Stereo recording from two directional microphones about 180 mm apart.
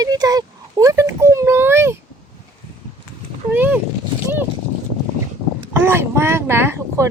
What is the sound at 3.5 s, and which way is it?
Speech, 10° right (ahead or behind).